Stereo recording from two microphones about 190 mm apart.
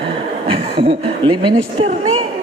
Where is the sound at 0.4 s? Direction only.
30° right (ahead or behind).